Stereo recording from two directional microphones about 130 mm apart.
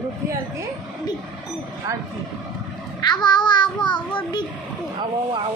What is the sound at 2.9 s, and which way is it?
Child singing, 35° left (ahead or behind).